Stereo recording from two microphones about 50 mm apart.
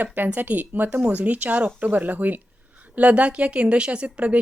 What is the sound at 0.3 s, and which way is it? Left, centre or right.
A woman's voice, right.